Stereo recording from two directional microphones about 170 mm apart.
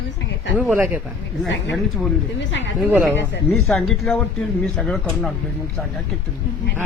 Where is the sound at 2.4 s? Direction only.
90° left.